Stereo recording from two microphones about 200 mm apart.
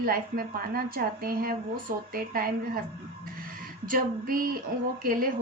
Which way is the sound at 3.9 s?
45° right (ahead or behind).